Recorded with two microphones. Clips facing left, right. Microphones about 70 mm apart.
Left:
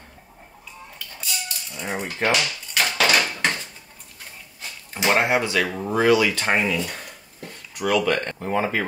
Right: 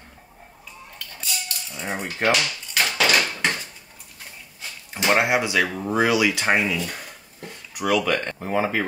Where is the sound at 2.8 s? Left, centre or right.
Centre.